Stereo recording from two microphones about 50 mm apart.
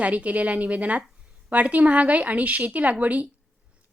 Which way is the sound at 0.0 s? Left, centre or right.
Right.